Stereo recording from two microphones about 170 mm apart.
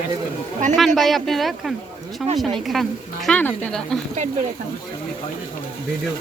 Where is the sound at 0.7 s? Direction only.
Centre (ahead or behind).